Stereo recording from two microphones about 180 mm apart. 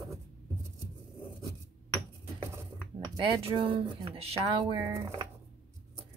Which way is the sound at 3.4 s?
30° right (ahead or behind).